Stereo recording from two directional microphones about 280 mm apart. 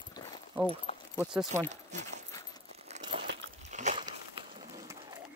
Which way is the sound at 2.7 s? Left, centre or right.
Right.